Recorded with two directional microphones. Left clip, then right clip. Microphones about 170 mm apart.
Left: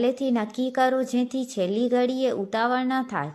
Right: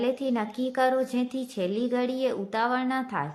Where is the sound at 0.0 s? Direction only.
25° left (ahead or behind).